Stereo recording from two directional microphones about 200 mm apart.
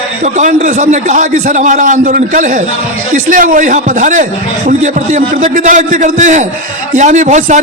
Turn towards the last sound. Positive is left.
turn(degrees=-35)  # may be behind; listen again after turning